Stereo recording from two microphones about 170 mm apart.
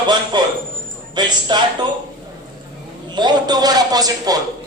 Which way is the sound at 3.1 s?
25° right (ahead or behind).